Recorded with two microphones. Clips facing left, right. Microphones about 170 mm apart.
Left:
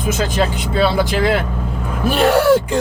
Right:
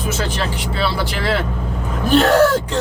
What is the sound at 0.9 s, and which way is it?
Speech, 15° left (ahead or behind).